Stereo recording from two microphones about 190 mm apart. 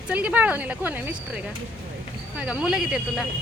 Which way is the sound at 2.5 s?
5° right (ahead or behind).